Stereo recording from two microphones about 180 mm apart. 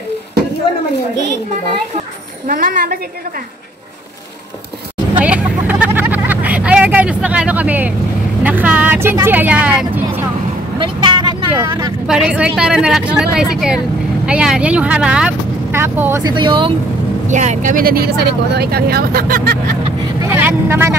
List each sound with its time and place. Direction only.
2.4 s a woman's voice: 50° right (ahead or behind)
5.2 s vehicle: 5° right (ahead or behind)
8.5 s speech: 10° right (ahead or behind)
10.8 s vehicle: 25° right (ahead or behind)
12.1 s speech: 5° right (ahead or behind); by 16.7 s 25° right (ahead or behind)
17.3 s speech: 40° right (ahead or behind)
20.2 s speech: 10° right (ahead or behind)